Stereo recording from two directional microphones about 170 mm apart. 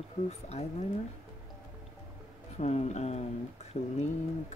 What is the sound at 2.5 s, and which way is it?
Speech, 40° left (ahead or behind).